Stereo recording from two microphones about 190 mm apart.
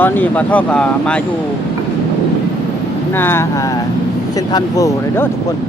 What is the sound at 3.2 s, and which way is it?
Speech, 10° left (ahead or behind).